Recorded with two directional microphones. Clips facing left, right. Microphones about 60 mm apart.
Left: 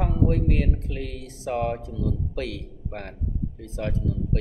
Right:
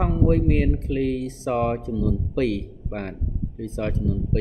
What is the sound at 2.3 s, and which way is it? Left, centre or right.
Speech, right.